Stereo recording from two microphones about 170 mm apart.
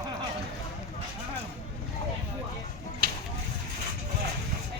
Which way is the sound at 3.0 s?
60° right (ahead or behind).